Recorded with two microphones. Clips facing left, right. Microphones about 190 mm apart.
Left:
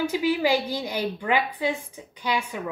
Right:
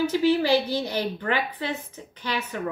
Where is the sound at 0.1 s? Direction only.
10° left (ahead or behind).